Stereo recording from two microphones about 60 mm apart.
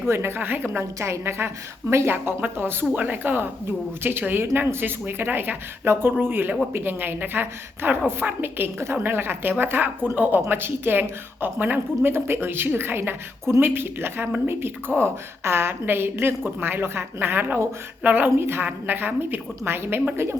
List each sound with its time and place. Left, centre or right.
0.1 s a woman's voice: right
0.9 s a woman's voice: right